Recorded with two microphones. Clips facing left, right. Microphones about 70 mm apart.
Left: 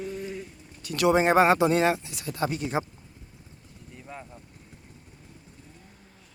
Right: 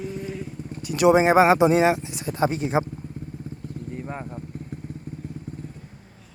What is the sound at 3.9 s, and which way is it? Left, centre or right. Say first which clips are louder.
Vehicle: right 7 dB; right.